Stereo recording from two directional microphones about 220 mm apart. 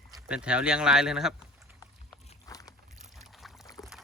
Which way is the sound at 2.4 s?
15° left (ahead or behind).